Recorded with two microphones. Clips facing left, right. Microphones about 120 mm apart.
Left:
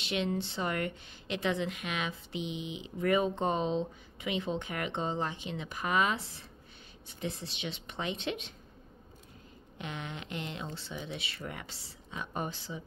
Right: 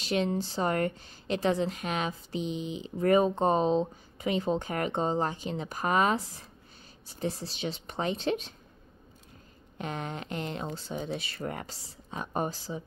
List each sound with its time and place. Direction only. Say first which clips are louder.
0.0 s a woman's voice: right 4 dB; 40° right (ahead or behind)
9.8 s a woman's voice: right 5 dB; 40° right (ahead or behind)